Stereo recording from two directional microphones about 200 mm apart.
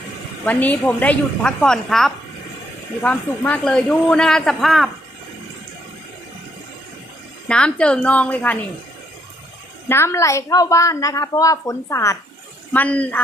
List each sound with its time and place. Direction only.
0.4 s a man's voice: 10° left (ahead or behind)
7.4 s a man's voice: 5° left (ahead or behind)
9.9 s a woman's voice: 15° left (ahead or behind)